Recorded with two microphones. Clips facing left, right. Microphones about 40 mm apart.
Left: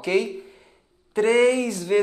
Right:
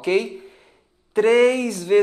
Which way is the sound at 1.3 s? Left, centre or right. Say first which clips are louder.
Right 2 dB; right.